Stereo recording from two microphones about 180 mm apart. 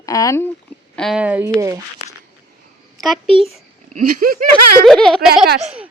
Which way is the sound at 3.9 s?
50° right (ahead or behind).